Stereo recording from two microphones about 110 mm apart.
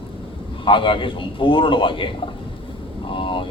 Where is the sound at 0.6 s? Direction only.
50° left (ahead or behind).